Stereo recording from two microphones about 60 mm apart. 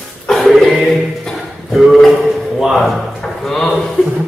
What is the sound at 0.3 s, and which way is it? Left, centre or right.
Music, centre.